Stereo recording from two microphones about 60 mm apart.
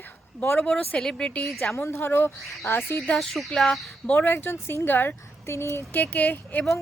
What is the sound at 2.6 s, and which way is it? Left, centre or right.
Speech, left.